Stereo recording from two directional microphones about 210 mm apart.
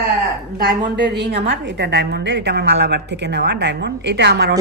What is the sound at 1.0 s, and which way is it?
A woman's voice, 55° right (ahead or behind).